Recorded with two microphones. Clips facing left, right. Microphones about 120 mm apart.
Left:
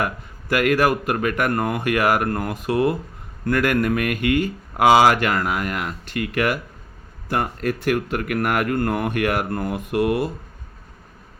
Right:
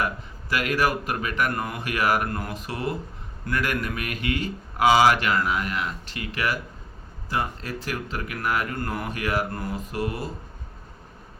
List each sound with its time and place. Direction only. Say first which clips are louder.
0.0 s speech: left 3 dB; 55° left (ahead or behind)